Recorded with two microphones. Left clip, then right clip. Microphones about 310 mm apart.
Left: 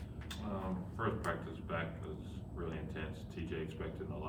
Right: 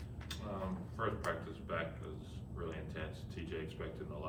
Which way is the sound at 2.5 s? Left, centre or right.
Centre.